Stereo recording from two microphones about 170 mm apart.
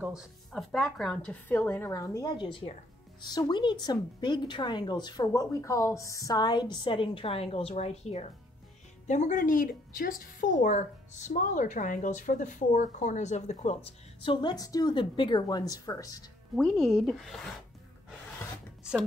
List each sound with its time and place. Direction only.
0.0 s a woman's voice: centre (ahead or behind); by 16.3 s 20° left (ahead or behind)
16.5 s speech: centre (ahead or behind)